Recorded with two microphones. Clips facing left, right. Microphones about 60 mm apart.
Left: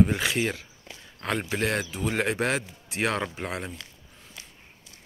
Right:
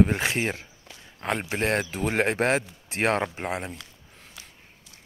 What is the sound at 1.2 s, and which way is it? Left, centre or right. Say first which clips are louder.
Speech: right 1 dB; right.